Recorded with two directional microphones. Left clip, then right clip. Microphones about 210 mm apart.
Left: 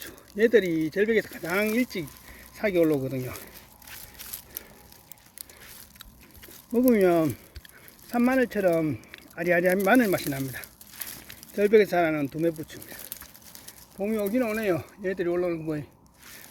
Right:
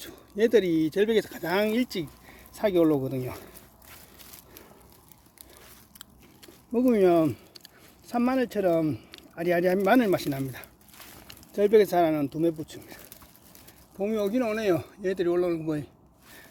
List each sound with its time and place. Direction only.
0.0 s speech: 10° right (ahead or behind)
6.0 s a sound: 5° right (ahead or behind)
8.1 s speech: 5° right (ahead or behind)
14.0 s speech: 15° right (ahead or behind)